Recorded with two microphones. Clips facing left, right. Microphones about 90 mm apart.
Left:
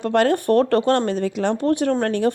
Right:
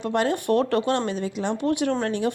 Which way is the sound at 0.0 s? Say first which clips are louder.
Left 5 dB; 55° left (ahead or behind).